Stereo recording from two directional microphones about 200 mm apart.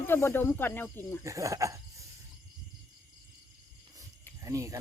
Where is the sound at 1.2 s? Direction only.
15° right (ahead or behind).